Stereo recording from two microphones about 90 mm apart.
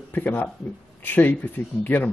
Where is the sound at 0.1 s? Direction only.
20° left (ahead or behind).